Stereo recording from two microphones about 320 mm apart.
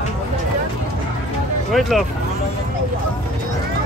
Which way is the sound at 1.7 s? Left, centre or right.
Centre.